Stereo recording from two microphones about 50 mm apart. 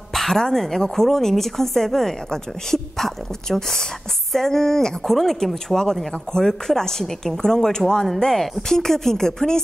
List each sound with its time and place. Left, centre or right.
0.1 s a woman's voice: centre